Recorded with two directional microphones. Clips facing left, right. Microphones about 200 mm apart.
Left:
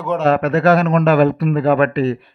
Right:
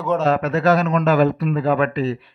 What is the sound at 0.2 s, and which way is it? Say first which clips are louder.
A man's voice: left 4 dB; 60° left (ahead or behind).